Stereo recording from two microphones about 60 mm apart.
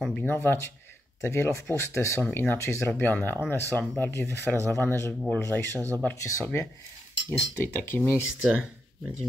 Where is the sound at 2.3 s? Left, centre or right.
Left.